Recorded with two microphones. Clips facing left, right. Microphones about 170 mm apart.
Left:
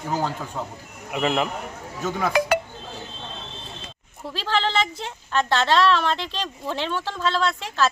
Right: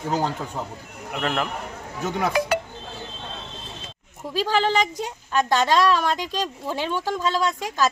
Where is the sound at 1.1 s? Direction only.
5° left (ahead or behind).